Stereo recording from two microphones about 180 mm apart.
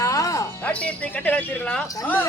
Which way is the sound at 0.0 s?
20° left (ahead or behind).